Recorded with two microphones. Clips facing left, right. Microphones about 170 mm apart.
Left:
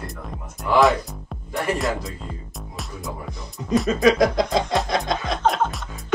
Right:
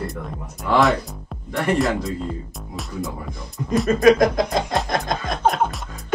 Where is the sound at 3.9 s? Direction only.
50° right (ahead or behind).